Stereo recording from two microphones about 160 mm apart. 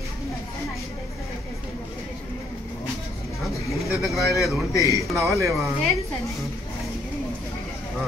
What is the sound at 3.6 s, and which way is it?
Speech, centre (ahead or behind).